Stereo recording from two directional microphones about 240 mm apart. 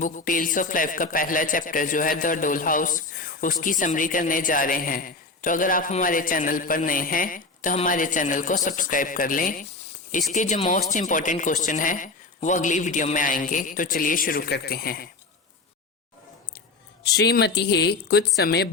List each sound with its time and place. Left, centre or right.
0.0 s a man's voice: left
17.0 s a man's voice: left